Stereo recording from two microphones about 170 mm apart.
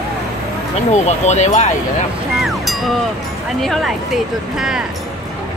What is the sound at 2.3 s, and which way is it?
Speech, centre (ahead or behind).